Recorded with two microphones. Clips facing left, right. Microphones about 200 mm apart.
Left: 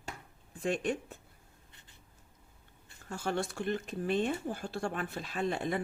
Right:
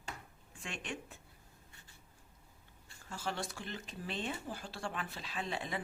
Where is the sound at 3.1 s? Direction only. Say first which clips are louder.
Left 6 dB; 50° left (ahead or behind).